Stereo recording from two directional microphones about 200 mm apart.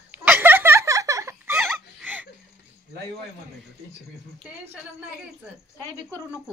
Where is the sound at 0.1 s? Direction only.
10° right (ahead or behind).